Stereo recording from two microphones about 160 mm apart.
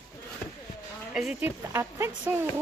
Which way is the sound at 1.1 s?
5° right (ahead or behind).